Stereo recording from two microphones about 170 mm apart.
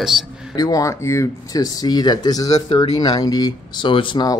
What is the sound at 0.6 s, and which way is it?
Speech, 20° left (ahead or behind).